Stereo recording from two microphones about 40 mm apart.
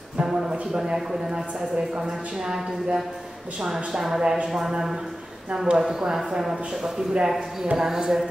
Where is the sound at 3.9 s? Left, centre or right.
Centre.